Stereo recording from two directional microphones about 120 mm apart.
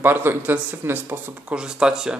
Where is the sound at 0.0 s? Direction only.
15° right (ahead or behind).